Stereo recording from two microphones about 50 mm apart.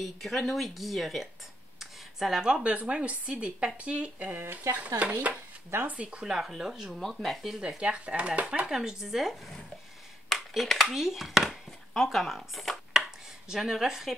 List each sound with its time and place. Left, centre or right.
0.0 s speech: centre
1.8 s a sound: centre
2.9 s speech: right
4.7 s dishes: right
5.7 s speech: right
6.0 s speech: centre
7.6 s speech: right; by 9.6 s centre
10.3 s a sound: centre
10.9 s speech: centre
12.9 s a sound: centre
13.5 s speech: centre